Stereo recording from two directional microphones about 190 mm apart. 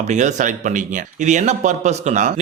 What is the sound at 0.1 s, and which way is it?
A man's voice, 40° right (ahead or behind).